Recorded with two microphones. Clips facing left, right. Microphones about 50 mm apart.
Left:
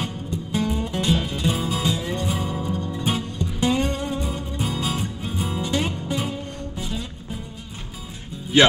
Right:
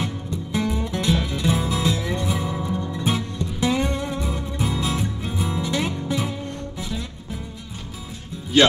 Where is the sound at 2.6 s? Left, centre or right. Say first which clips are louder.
Right 1 dB; right.